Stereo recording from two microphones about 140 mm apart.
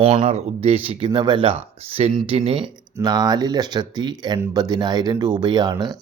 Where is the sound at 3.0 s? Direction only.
30° right (ahead or behind).